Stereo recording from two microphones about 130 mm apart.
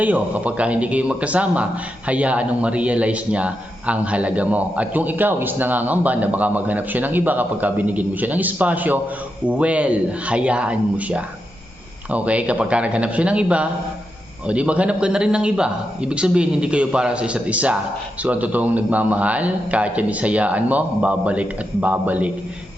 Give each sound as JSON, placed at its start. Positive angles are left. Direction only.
{"t": 0.0, "sound": "a man's voice", "side_deg": -10}